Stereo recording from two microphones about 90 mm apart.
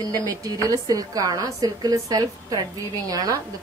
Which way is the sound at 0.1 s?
40° right (ahead or behind).